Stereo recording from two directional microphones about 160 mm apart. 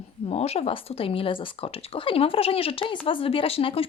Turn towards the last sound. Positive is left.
turn(degrees=35)  # may be behind; listen again after turning